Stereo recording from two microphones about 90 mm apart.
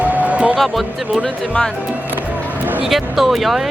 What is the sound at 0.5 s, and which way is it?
Speech, centre (ahead or behind).